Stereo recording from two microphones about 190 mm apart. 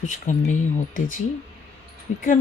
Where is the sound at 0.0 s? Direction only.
40° left (ahead or behind).